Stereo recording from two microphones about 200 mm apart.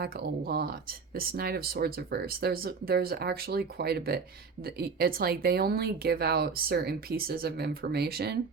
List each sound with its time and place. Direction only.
0.0 s speech: 50° right (ahead or behind)